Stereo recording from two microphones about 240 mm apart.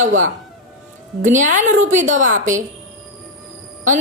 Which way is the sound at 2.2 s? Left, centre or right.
Right.